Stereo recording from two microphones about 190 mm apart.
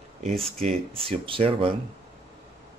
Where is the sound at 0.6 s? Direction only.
30° right (ahead or behind).